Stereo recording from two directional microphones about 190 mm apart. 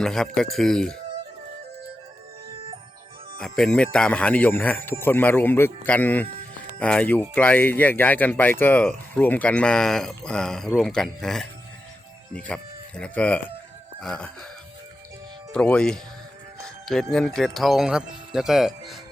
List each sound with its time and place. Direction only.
0.0 s speech: 5° left (ahead or behind)
3.3 s speech: 5° left (ahead or behind)
6.2 s music: 35° right (ahead or behind)
6.7 s speech: 5° left (ahead or behind)
15.5 s speech: 5° left (ahead or behind)